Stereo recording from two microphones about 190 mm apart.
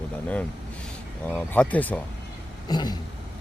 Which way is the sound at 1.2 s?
10° left (ahead or behind).